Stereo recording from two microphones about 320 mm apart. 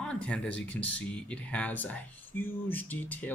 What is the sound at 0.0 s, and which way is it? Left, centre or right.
Speech, centre.